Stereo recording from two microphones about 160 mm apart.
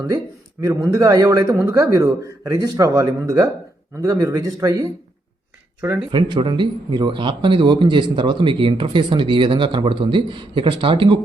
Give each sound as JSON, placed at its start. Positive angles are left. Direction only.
{"t": 0.6, "sound": "speech", "side_deg": -20}
{"t": 6.1, "sound": "speech", "side_deg": -30}